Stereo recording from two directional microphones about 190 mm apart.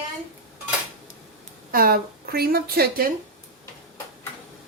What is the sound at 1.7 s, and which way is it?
A woman's voice, 50° right (ahead or behind).